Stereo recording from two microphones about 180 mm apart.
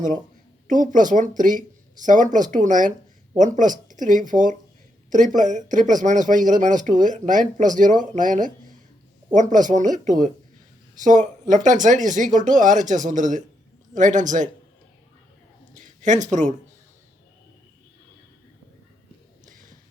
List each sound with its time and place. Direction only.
0.7 s speech: 45° right (ahead or behind)
15.7 s speech: 45° right (ahead or behind)